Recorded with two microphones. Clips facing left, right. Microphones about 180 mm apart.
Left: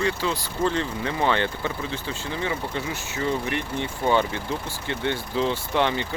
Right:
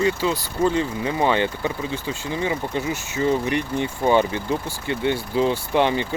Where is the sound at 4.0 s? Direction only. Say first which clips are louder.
Right 3 dB; 15° right (ahead or behind).